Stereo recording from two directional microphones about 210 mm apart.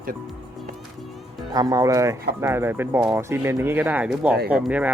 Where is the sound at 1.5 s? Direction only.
15° right (ahead or behind).